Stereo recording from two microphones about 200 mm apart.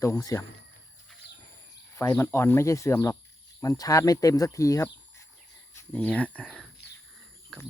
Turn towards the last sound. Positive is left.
turn(degrees=0)  # may be behind; listen again after turning